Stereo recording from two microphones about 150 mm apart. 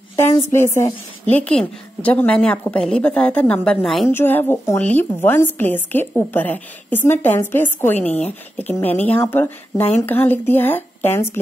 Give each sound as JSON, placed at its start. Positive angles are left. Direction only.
{"t": 0.1, "sound": "a woman's voice", "side_deg": 15}
{"t": 4.1, "sound": "a woman's voice", "side_deg": 15}